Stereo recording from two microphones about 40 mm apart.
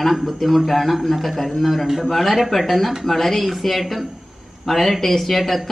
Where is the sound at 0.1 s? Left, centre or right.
Centre.